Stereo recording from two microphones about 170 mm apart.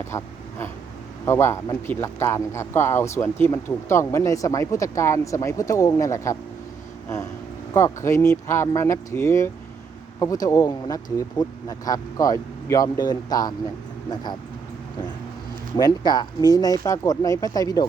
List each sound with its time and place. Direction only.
0.1 s speech: 20° left (ahead or behind)
7.7 s speech: 15° left (ahead or behind)
15.7 s speech: 25° left (ahead or behind)